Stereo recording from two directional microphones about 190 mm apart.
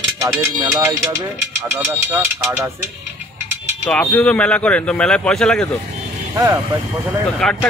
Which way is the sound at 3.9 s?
5° left (ahead or behind).